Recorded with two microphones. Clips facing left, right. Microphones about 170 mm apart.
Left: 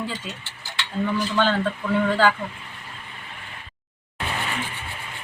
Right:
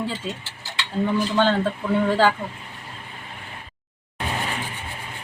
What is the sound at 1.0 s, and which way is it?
Speech, 25° right (ahead or behind).